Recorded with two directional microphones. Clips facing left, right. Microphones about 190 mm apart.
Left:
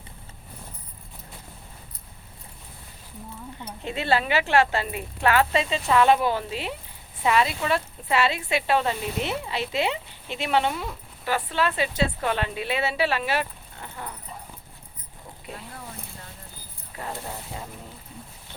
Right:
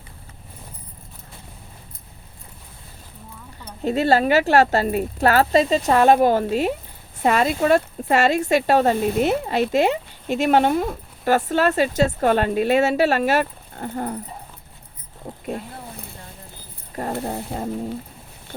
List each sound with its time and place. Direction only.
3.8 s speech: 40° right (ahead or behind)
17.2 s speech: 50° right (ahead or behind)